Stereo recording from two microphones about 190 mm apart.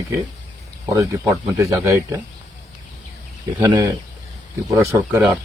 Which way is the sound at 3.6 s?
15° right (ahead or behind).